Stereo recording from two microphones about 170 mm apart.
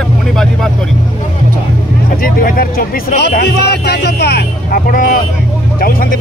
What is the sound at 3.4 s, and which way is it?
Speech, 75° left (ahead or behind).